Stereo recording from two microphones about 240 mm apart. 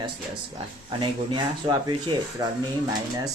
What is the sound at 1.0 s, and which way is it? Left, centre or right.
Speech, centre.